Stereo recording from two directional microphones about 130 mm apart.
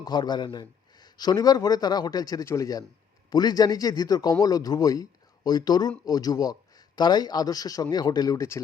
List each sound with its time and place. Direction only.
0.0 s a man's voice: 35° left (ahead or behind)